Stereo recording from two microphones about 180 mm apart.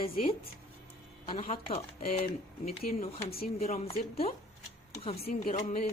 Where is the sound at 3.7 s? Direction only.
35° left (ahead or behind).